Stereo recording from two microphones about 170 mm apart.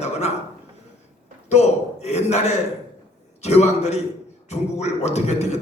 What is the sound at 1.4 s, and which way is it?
A man's voice, 40° left (ahead or behind).